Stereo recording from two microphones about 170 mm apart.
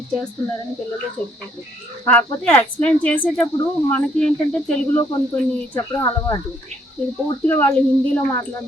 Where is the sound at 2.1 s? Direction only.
10° left (ahead or behind).